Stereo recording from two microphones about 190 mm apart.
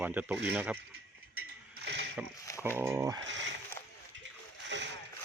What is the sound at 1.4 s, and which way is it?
Ratchet, 65° right (ahead or behind).